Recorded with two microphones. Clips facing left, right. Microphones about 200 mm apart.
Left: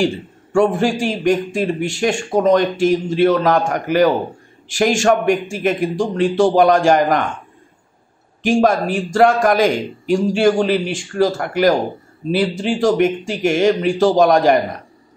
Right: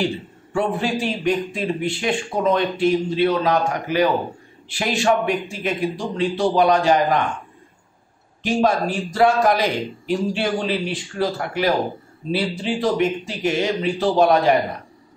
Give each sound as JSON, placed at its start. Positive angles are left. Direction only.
{"t": 0.0, "sound": "a man's voice", "side_deg": 45}
{"t": 8.5, "sound": "a man's voice", "side_deg": 50}